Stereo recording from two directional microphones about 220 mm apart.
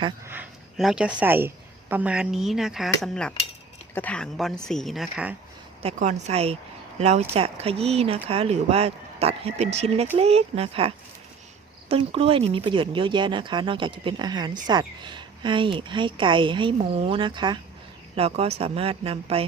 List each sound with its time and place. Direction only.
0.3 s a woman's voice: 5° right (ahead or behind)
5.8 s speech: 30° right (ahead or behind)